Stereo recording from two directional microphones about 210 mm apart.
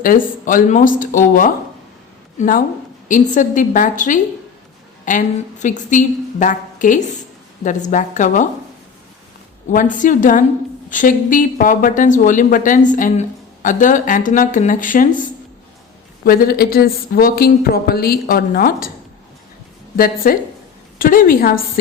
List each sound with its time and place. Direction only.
0.0 s speech: 40° left (ahead or behind)
9.7 s speech: 40° left (ahead or behind)
16.2 s a woman's voice: 45° left (ahead or behind)
20.0 s a woman's voice: 45° left (ahead or behind)